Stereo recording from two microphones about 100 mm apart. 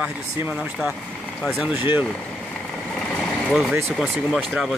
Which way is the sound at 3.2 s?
5° left (ahead or behind).